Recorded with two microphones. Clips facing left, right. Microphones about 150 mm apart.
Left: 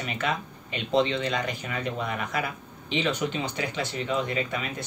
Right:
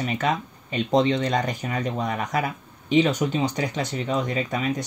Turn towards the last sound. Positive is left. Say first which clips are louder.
# right 3 dB
turn(degrees=-40)  # may be behind; listen again after turning